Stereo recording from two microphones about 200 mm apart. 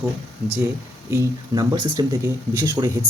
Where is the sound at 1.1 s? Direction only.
15° right (ahead or behind).